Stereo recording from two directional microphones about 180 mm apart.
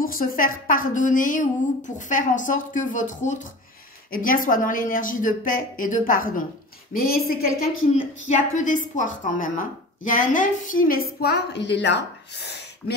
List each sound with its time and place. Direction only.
0.0 s a woman's voice: 50° left (ahead or behind)
7.9 s a woman's voice: 40° left (ahead or behind); by 12.6 s 65° left (ahead or behind)